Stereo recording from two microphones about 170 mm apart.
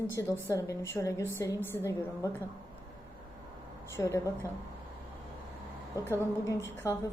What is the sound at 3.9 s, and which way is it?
Speech, 15° left (ahead or behind).